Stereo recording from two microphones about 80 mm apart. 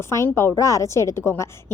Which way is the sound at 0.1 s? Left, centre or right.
Left.